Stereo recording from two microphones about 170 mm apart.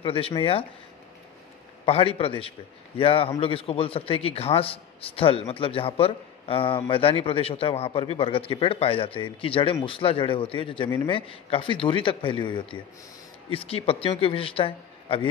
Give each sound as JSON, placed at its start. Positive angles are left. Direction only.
{"t": 0.0, "sound": "a man's voice", "side_deg": 30}
{"t": 1.9, "sound": "a man's voice", "side_deg": 35}